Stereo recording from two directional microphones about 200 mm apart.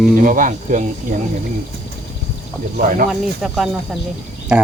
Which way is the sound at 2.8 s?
45° right (ahead or behind).